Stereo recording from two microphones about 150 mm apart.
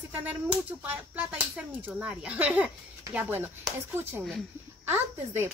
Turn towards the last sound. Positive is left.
turn(degrees=-15)  # may be behind; listen again after turning